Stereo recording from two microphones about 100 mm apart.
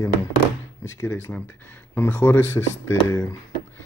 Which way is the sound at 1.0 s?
25° left (ahead or behind).